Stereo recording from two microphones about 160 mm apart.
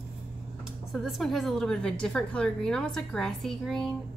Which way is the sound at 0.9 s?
Centre (ahead or behind).